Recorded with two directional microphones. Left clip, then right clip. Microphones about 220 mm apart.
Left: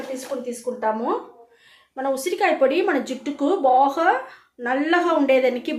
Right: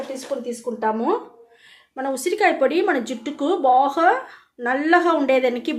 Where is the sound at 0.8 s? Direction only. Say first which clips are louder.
Right 2 dB; 40° right (ahead or behind).